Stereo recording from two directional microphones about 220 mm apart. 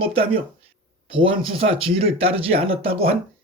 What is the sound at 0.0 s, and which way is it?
Speech, 25° right (ahead or behind).